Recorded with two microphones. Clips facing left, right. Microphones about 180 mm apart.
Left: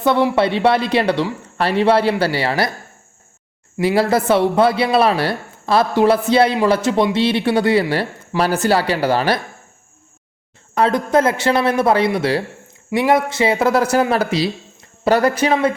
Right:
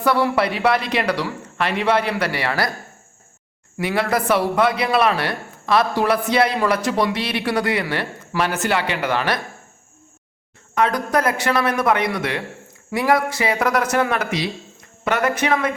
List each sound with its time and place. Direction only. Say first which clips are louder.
0.0 s a man's voice: left 3 dB; 20° left (ahead or behind)
3.8 s a man's voice: left 5 dB; 30° left (ahead or behind)
10.8 s a man's voice: left 4 dB; 30° left (ahead or behind)